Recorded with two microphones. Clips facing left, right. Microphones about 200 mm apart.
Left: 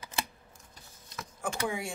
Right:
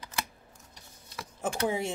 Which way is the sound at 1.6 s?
25° right (ahead or behind).